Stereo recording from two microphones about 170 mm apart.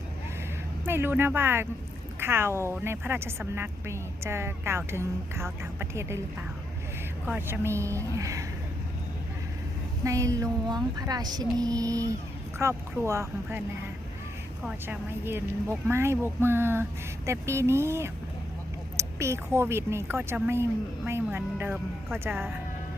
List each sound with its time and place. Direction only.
0.9 s a woman's voice: 15° right (ahead or behind)
7.3 s a woman's voice: 10° right (ahead or behind)
10.0 s a woman's voice: 20° right (ahead or behind)
14.6 s a woman's voice: 10° right (ahead or behind)